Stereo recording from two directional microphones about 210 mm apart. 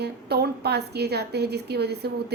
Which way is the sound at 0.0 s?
50° right (ahead or behind).